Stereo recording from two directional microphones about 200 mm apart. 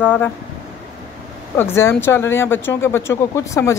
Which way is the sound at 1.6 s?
10° left (ahead or behind).